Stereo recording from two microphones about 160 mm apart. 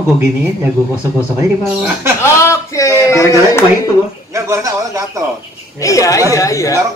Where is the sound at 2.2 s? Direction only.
20° left (ahead or behind).